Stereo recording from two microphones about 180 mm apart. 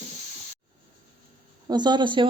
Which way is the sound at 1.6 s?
25° right (ahead or behind).